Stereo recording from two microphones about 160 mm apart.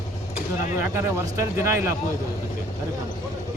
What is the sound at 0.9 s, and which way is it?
Speech, 15° right (ahead or behind).